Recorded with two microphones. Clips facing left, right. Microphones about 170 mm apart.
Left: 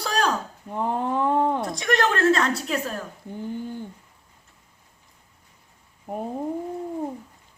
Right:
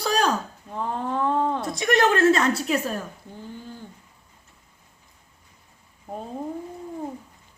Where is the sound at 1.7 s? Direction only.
5° right (ahead or behind).